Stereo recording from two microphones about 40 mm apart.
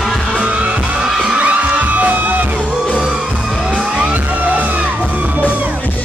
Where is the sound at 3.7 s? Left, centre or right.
Right.